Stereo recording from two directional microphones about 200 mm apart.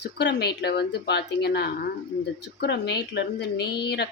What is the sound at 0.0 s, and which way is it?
A woman's voice, 55° left (ahead or behind).